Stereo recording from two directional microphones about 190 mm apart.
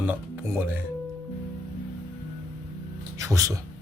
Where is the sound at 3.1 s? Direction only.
15° right (ahead or behind).